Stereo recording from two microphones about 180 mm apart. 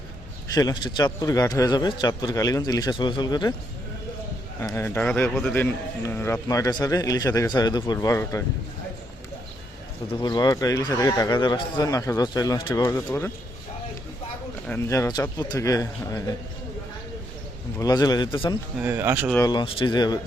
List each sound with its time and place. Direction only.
0.5 s speech: 25° left (ahead or behind)
4.6 s a man's voice: 15° left (ahead or behind)
10.2 s speech: 20° left (ahead or behind)
14.7 s speech: 15° left (ahead or behind)
17.7 s speech: 20° left (ahead or behind)
18.8 s speech: 10° right (ahead or behind)
19.4 s speech: 25° left (ahead or behind)